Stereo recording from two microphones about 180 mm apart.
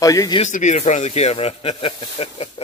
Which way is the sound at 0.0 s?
20° left (ahead or behind).